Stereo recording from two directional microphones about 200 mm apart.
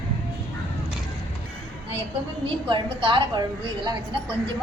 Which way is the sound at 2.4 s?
25° right (ahead or behind).